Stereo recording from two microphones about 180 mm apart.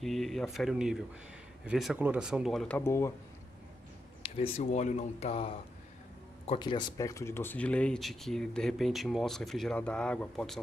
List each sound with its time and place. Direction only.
0.0 s speech: centre (ahead or behind)
2.8 s speech: 15° left (ahead or behind)
4.2 s speech: 35° left (ahead or behind); by 10.6 s centre (ahead or behind)